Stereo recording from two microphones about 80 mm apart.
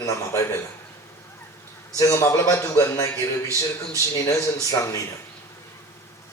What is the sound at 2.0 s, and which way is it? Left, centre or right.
Speech, left.